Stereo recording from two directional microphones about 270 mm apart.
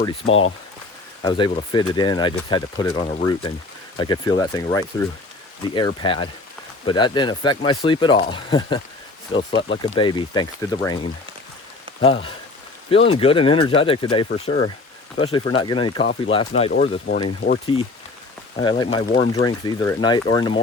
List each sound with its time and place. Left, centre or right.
0.3 s speech: left
1.2 s speech: centre
12.0 s speech: centre
18.6 s speech: centre